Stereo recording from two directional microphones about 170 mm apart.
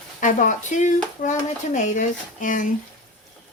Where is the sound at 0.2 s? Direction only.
50° left (ahead or behind).